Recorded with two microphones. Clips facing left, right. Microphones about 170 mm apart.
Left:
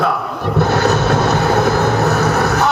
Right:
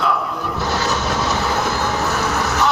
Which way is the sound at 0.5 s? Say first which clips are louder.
Left 8 dB; 60° left (ahead or behind).